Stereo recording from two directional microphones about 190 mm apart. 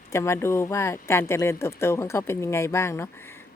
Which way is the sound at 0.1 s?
15° left (ahead or behind).